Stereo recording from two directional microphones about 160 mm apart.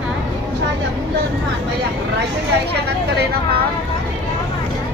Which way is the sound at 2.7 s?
90° right.